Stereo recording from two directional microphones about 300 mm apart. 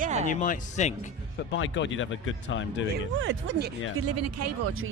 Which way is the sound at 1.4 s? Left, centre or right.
Left.